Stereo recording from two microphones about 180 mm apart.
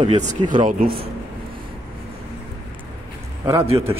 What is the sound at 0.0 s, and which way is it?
Speech, 40° right (ahead or behind).